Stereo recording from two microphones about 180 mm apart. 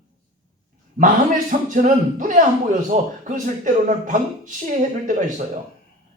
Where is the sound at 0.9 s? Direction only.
45° right (ahead or behind).